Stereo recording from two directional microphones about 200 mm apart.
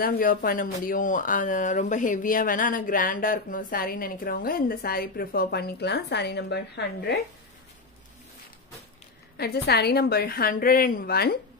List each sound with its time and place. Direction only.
0.0 s speech: 45° left (ahead or behind)
9.4 s speech: 55° left (ahead or behind)